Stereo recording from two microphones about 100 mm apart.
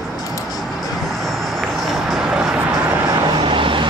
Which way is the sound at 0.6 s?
Centre (ahead or behind).